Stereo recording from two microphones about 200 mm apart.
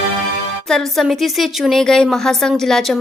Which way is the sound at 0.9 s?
Centre (ahead or behind).